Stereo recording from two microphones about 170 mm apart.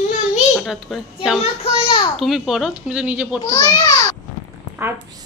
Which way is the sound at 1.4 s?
35° left (ahead or behind).